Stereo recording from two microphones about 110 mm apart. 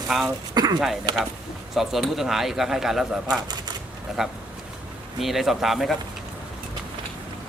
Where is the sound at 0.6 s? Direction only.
40° right (ahead or behind).